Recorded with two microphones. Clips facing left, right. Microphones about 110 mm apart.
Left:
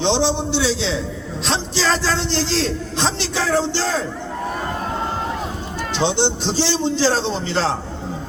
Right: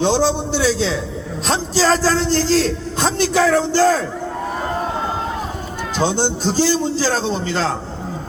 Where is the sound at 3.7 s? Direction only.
40° right (ahead or behind).